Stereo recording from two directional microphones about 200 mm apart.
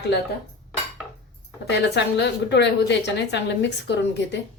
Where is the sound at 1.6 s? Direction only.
60° left (ahead or behind).